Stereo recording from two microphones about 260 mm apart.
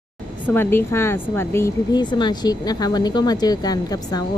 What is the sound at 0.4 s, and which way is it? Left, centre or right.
A woman's voice, centre.